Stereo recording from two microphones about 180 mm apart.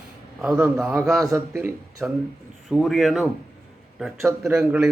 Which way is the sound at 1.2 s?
15° right (ahead or behind).